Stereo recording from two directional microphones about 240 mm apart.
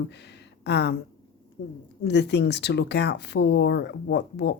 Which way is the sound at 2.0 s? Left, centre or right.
Left.